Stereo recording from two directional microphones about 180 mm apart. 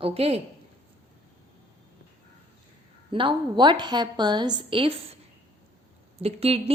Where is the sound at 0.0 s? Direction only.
35° right (ahead or behind).